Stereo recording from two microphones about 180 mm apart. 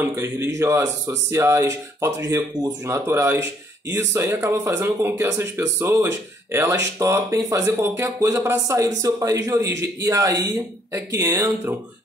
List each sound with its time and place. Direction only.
0.0 s speech: 15° right (ahead or behind)